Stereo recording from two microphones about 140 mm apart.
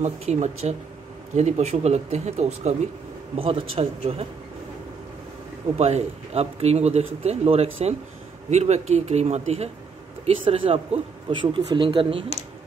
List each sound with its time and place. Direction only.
0.0 s speech: 55° right (ahead or behind)
3.3 s speech: 40° right (ahead or behind)
5.8 s speech: 50° right (ahead or behind)